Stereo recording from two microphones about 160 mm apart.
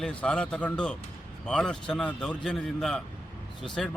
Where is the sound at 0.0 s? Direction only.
5° left (ahead or behind).